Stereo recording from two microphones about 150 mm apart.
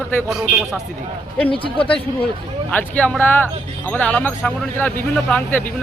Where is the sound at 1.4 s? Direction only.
35° left (ahead or behind).